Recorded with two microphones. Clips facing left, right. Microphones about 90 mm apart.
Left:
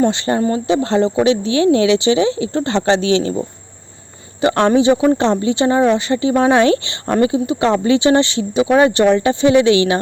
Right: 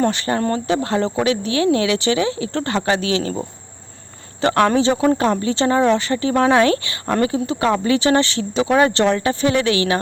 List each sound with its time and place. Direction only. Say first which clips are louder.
0.0 s speech: left 3 dB; 15° left (ahead or behind)
4.8 s speech: left 3 dB; 15° left (ahead or behind)